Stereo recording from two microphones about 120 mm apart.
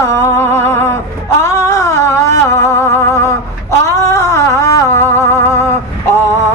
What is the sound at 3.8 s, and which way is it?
Music, 25° left (ahead or behind).